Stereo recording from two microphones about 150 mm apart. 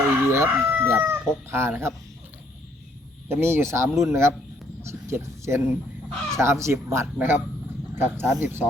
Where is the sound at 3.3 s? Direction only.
15° right (ahead or behind).